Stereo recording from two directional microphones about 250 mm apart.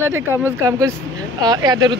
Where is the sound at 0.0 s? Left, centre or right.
Centre.